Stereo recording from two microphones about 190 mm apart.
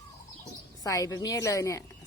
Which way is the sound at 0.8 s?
20° left (ahead or behind).